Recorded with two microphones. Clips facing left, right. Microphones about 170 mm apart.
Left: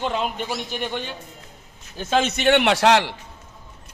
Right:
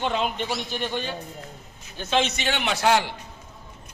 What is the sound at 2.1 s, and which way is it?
A man's voice, 50° left (ahead or behind).